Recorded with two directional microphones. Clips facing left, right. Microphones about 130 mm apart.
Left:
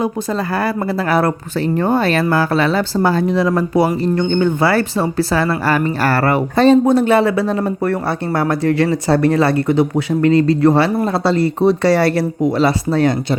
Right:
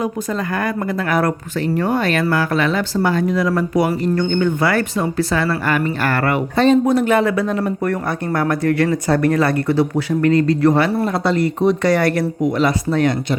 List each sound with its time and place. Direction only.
0.5 s speech: 35° left (ahead or behind)